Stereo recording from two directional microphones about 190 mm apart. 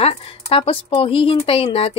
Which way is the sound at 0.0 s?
30° left (ahead or behind).